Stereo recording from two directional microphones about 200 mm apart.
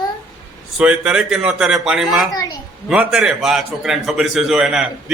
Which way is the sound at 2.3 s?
20° left (ahead or behind).